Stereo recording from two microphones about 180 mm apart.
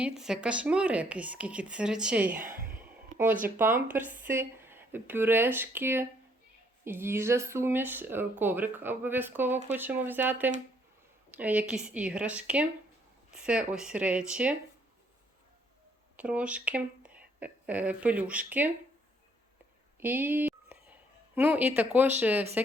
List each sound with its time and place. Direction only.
0.0 s speech: 5° right (ahead or behind)
2.4 s speech: 50° right (ahead or behind)
3.6 s speech: 10° right (ahead or behind)
16.1 s speech: 5° right (ahead or behind)
20.0 s speech: 10° right (ahead or behind)